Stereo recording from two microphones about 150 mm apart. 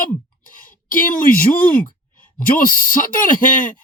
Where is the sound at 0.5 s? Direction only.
65° left (ahead or behind).